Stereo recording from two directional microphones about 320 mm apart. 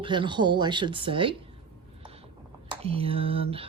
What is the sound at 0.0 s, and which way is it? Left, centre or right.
Speech, centre.